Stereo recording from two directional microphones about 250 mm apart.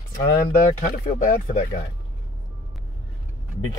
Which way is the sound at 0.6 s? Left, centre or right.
Left.